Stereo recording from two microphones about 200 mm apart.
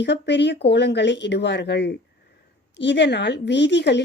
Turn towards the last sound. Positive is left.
turn(degrees=60)  # may be behind; listen again after turning